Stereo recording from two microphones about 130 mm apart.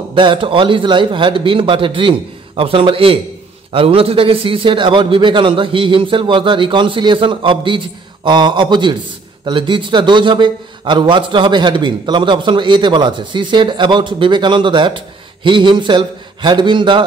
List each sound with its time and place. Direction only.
0.1 s a man's voice: 40° right (ahead or behind)